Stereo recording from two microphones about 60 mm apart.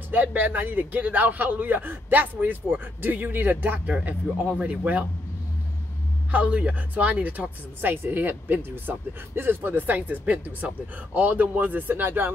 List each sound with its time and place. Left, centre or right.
0.1 s speech: right
6.3 s speech: right